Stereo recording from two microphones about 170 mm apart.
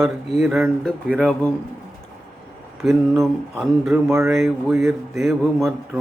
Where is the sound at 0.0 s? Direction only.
Centre (ahead or behind).